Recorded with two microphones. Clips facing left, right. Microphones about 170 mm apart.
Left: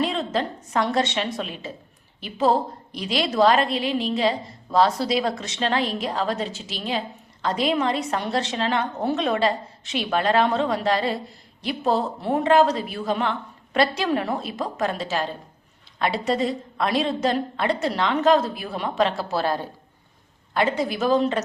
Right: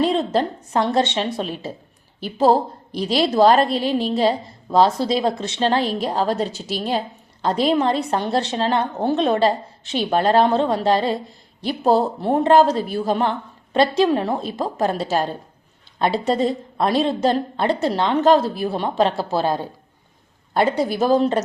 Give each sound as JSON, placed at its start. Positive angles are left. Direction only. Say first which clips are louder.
{"t": 0.0, "sound": "a woman's voice", "louder": "right 5 dB", "side_deg": -35}
{"t": 13.7, "sound": "a woman's voice", "louder": "right 5 dB", "side_deg": -25}
{"t": 16.0, "sound": "a woman's voice", "louder": "right 4 dB", "side_deg": -30}
{"t": 20.5, "sound": "a woman's voice", "louder": "right 4 dB", "side_deg": -35}